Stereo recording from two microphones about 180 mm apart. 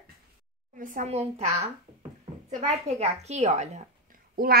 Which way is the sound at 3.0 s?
35° right (ahead or behind).